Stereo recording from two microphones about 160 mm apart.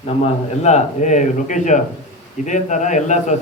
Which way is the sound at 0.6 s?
45° left (ahead or behind).